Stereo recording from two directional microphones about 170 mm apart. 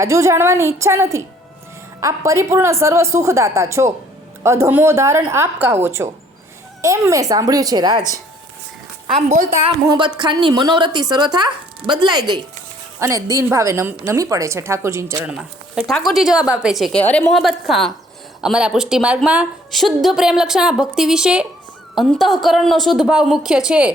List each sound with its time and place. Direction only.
0.0 s a woman's voice: 15° right (ahead or behind)
9.1 s a woman's voice: 40° right (ahead or behind)
10.2 s a woman's voice: 25° right (ahead or behind); by 23.9 s 5° right (ahead or behind)